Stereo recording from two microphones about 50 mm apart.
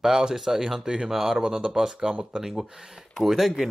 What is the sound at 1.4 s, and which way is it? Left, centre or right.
Speech, centre.